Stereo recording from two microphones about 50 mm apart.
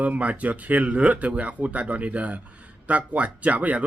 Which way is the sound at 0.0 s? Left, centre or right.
Right.